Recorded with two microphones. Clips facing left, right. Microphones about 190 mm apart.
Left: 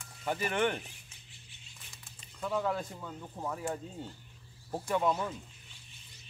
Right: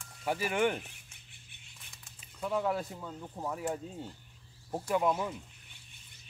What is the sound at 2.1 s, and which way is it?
Speech, 5° right (ahead or behind).